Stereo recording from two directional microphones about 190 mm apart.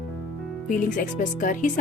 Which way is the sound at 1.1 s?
45° left (ahead or behind).